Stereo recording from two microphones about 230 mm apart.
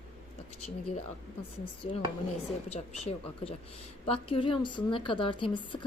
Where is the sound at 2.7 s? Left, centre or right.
Left.